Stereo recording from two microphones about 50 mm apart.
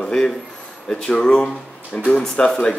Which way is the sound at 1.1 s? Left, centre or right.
Left.